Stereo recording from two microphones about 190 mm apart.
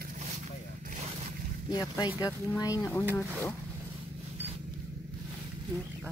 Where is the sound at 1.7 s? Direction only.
20° left (ahead or behind).